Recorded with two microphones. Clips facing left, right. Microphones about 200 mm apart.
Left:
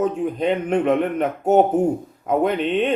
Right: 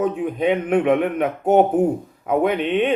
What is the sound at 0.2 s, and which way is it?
Speech, 5° right (ahead or behind).